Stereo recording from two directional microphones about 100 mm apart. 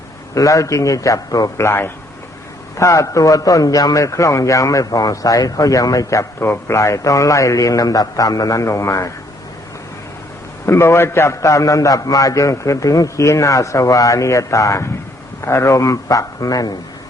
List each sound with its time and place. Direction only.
0.3 s a man's voice: 35° left (ahead or behind)
10.7 s a man's voice: 25° left (ahead or behind)